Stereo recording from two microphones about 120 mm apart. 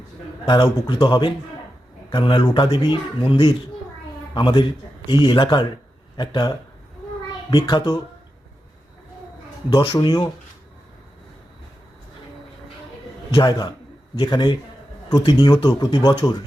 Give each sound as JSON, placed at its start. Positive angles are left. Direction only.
{"t": 0.4, "sound": "speech", "side_deg": 40}
{"t": 9.6, "sound": "speech", "side_deg": 40}
{"t": 13.3, "sound": "speech", "side_deg": 35}